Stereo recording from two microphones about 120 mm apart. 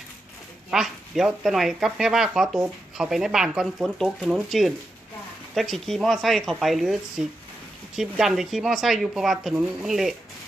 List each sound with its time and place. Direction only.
0.7 s speech: 5° right (ahead or behind)